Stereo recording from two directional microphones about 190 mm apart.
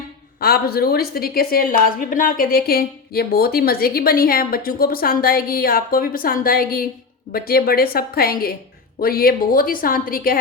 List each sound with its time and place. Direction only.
0.3 s a woman's voice: 55° left (ahead or behind)